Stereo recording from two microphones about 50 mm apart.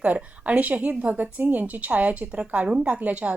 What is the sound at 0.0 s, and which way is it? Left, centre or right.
A woman's voice, right.